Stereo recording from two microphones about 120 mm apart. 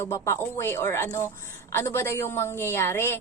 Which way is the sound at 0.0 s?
20° left (ahead or behind).